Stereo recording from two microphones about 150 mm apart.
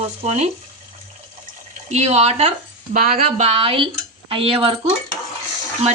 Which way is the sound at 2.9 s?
70° right (ahead or behind).